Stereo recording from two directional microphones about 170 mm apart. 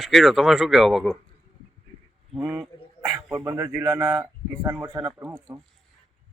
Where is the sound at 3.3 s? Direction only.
15° right (ahead or behind).